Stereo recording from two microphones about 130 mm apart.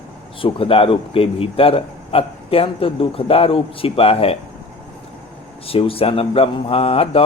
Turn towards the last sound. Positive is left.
turn(degrees=50)  # may be behind; listen again after turning